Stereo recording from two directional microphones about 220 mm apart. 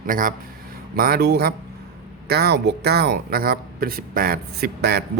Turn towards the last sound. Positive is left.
turn(degrees=-45)  # may be behind; listen again after turning